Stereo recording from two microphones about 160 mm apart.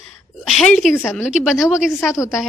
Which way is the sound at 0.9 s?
15° left (ahead or behind).